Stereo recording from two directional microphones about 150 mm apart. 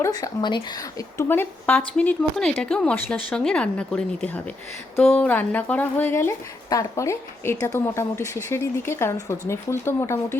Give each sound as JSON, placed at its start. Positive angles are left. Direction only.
{"t": 0.0, "sound": "speech", "side_deg": 25}